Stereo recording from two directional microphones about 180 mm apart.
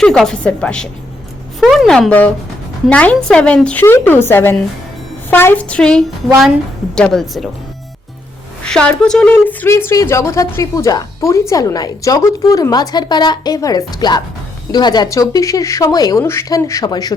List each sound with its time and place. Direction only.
0.0 s a woman's voice: 5° left (ahead or behind)
8.6 s a woman's voice: 5° left (ahead or behind); by 17.2 s 20° left (ahead or behind)